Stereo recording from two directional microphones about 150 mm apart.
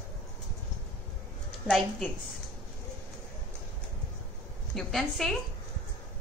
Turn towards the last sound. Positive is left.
turn(degrees=0)  # may be behind; listen again after turning